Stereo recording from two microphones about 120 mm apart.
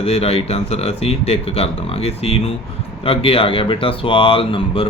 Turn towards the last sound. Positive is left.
turn(degrees=50)  # may be behind; listen again after turning